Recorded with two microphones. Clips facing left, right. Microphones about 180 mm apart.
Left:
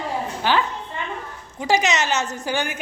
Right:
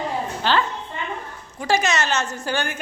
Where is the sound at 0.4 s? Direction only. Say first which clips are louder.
Even; 10° left (ahead or behind).